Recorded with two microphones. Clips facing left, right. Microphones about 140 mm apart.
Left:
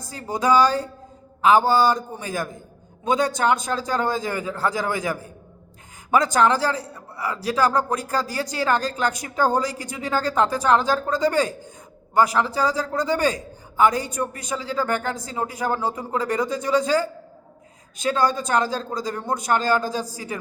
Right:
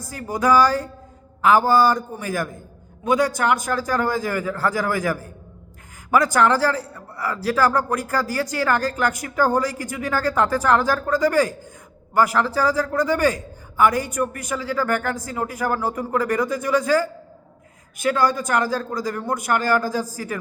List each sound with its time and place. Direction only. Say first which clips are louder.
0.1 s a man's voice: right 1 dB; 25° left (ahead or behind)